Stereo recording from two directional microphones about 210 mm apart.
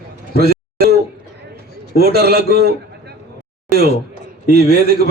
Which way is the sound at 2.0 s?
50° right (ahead or behind).